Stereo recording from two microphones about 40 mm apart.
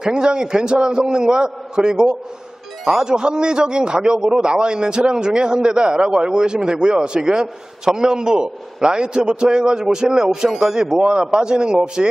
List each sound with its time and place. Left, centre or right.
0.0 s a man's voice: right